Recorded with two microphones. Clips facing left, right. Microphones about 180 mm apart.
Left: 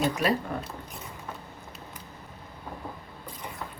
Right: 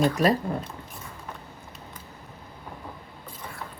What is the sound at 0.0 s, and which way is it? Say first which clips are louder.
Speech: right 4 dB; 40° right (ahead or behind).